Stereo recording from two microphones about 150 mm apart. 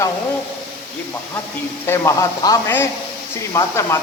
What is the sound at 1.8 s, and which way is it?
A man's voice, 15° left (ahead or behind).